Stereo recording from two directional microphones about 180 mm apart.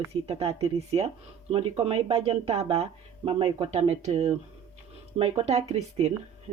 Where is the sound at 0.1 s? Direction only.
35° right (ahead or behind).